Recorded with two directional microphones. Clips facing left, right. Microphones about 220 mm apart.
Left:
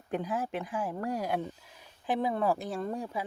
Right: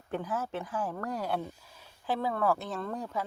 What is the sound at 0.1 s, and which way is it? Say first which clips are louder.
Speech: left 1 dB; 15° left (ahead or behind).